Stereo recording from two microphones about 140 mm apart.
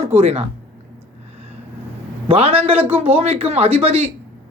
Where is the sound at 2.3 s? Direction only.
45° right (ahead or behind).